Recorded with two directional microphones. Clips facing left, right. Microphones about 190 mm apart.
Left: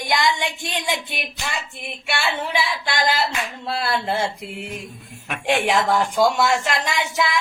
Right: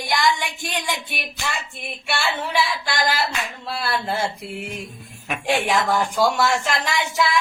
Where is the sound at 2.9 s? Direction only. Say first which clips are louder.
Left 1 dB; 20° left (ahead or behind).